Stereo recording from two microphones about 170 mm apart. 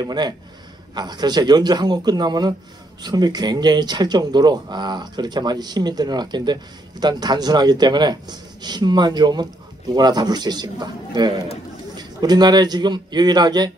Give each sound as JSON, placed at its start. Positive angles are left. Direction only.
{"t": 0.0, "sound": "speech", "side_deg": -25}